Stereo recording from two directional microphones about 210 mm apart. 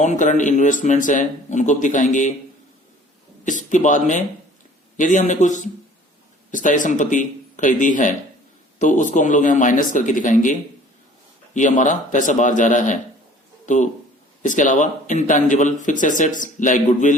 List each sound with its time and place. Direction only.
0.0 s a man's voice: 35° left (ahead or behind)
3.4 s a man's voice: 35° left (ahead or behind)
11.8 s a man's voice: 35° left (ahead or behind)